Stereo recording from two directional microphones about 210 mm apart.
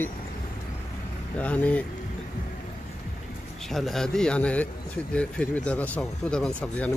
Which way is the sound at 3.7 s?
Centre (ahead or behind).